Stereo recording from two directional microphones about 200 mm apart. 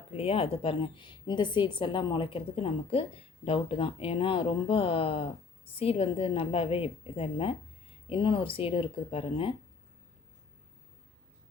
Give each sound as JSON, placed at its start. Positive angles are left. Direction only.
{"t": 0.1, "sound": "a woman's voice", "side_deg": 30}